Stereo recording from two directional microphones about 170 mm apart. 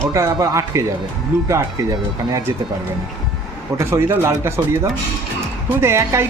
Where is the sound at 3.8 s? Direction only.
15° right (ahead or behind).